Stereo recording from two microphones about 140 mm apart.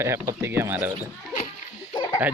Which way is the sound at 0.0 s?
20° right (ahead or behind).